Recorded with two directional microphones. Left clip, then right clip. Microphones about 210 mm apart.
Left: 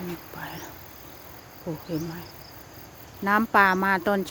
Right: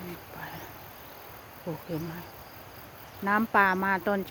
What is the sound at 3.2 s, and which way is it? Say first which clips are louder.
Speech: left 4 dB; 15° left (ahead or behind).